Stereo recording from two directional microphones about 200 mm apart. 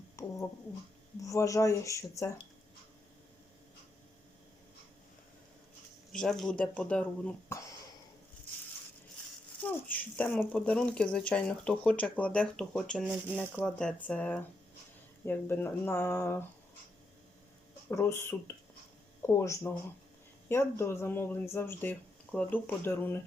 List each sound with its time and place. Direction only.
0.2 s a sound: 15° left (ahead or behind)
1.2 s speech: 15° left (ahead or behind)
6.1 s speech: centre (ahead or behind)
9.6 s speech: 10° left (ahead or behind)
17.9 s speech: 10° left (ahead or behind)